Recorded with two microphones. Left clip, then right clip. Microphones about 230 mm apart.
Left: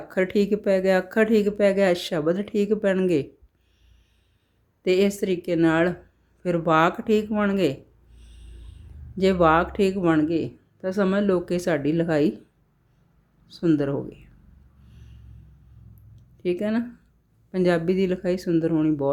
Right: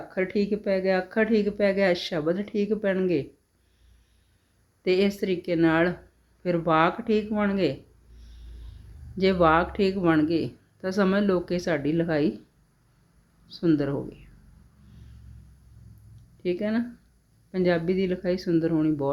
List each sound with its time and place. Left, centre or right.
0.1 s speech: left
4.8 s speech: centre
13.5 s speech: centre
14.8 s vehicle: centre
16.4 s speech: centre